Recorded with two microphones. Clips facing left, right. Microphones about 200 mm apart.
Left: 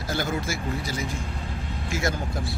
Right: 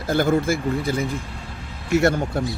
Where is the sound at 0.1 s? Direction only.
55° right (ahead or behind).